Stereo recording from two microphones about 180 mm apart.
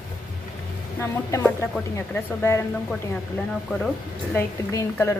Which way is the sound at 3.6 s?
Centre (ahead or behind).